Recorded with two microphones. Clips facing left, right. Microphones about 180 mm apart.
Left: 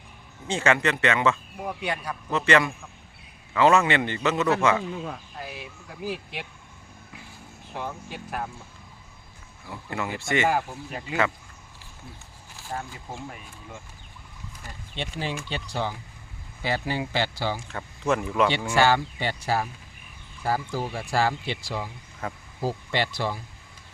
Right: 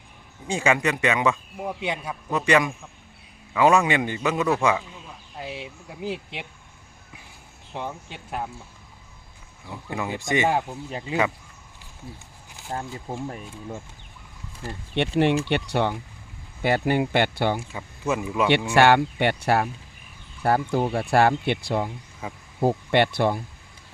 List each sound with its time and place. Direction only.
0.4 s speech: 10° right (ahead or behind)
5.4 s speech: 20° right (ahead or behind)
7.7 s speech: 20° right (ahead or behind)
9.6 s speech: 15° right (ahead or behind)
12.5 s speech: 25° right (ahead or behind)
15.0 s speech: 65° right (ahead or behind)
16.6 s speech: 55° right (ahead or behind)
17.6 s speech: 10° right (ahead or behind)
18.7 s speech: 65° right (ahead or behind)
22.2 s speech: 10° right (ahead or behind)
22.6 s speech: 60° right (ahead or behind)